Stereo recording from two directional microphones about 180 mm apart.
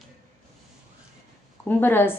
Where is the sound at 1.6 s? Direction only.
10° left (ahead or behind).